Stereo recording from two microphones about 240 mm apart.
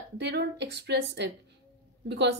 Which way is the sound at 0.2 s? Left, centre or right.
Right.